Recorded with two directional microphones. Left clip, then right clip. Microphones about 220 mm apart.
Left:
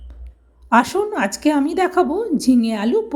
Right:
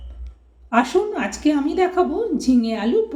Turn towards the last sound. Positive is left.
turn(degrees=45)  # may be behind; listen again after turning